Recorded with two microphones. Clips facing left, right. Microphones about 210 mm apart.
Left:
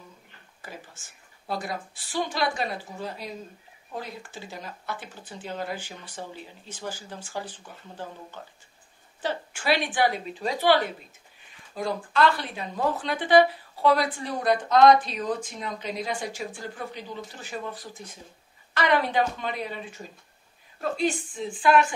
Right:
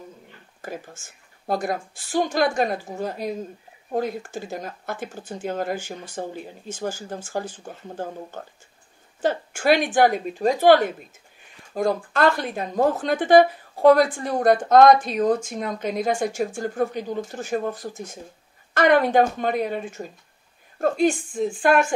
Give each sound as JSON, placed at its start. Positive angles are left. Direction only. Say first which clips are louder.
{"t": 0.6, "sound": "a woman's voice", "louder": "right 8 dB", "side_deg": -45}